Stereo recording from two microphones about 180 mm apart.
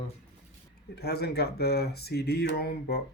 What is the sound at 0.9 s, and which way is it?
Speech, 60° left (ahead or behind).